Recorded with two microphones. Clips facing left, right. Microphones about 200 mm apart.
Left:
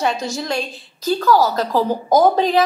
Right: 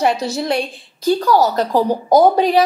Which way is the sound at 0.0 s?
30° right (ahead or behind).